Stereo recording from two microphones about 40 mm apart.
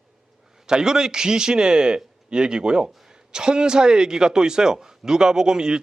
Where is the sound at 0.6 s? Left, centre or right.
Centre.